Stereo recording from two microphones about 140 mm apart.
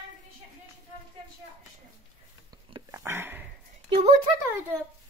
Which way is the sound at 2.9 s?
20° right (ahead or behind).